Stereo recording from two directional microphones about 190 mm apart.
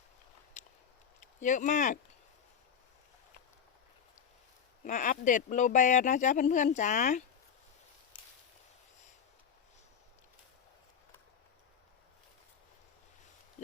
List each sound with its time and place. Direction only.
0.6 s walk: 40° left (ahead or behind)
1.4 s speech: 40° left (ahead or behind)
4.8 s speech: 45° left (ahead or behind)